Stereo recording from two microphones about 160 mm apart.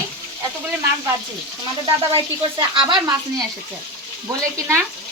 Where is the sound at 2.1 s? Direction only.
30° right (ahead or behind).